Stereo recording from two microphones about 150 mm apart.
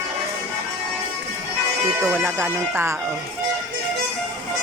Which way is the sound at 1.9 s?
15° right (ahead or behind).